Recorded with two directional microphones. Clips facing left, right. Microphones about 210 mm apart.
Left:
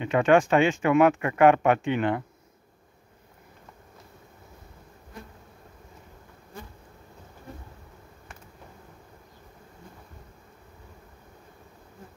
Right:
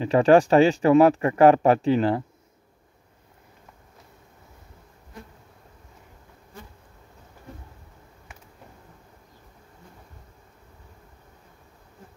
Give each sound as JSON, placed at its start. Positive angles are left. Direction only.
{"t": 0.0, "sound": "speech", "side_deg": -35}